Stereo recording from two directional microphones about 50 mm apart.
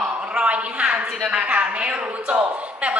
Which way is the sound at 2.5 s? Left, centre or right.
Right.